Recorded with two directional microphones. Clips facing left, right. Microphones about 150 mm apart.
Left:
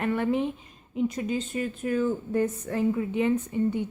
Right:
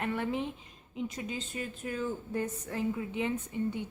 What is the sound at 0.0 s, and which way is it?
A woman's voice, 55° left (ahead or behind).